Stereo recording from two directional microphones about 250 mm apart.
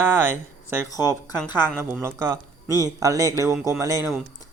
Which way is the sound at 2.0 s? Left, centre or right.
Centre.